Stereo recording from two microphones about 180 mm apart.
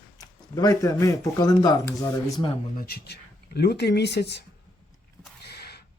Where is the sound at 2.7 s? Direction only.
60° left (ahead or behind).